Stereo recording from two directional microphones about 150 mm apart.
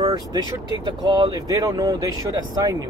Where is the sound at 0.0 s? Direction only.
25° right (ahead or behind).